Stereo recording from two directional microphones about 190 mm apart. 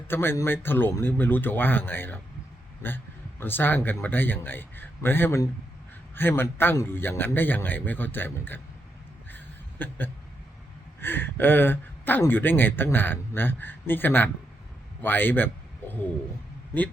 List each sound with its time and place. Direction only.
0.1 s speech: 10° left (ahead or behind)
9.3 s a sound: 10° left (ahead or behind)
11.0 s speech: 10° left (ahead or behind)